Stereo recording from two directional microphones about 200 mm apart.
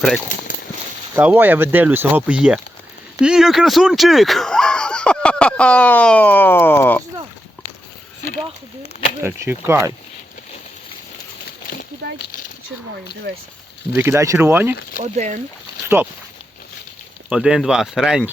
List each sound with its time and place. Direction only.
1.1 s speech: 10° right (ahead or behind); by 7.0 s 10° left (ahead or behind)
8.8 s speech: 30° left (ahead or behind)
9.2 s speech: 10° right (ahead or behind)
13.9 s speech: 10° right (ahead or behind)
15.0 s speech: 35° right (ahead or behind)
16.0 s speech: 10° right (ahead or behind)
17.2 s speech: 5° right (ahead or behind)